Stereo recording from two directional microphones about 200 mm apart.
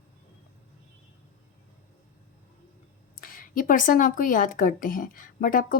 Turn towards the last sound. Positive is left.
turn(degrees=45)  # may be behind; listen again after turning